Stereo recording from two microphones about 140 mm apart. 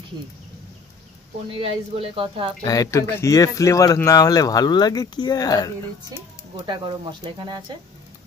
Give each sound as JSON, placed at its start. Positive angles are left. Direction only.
{"t": 1.5, "sound": "speech", "side_deg": -45}
{"t": 2.6, "sound": "speech", "side_deg": 25}
{"t": 6.6, "sound": "speech", "side_deg": -35}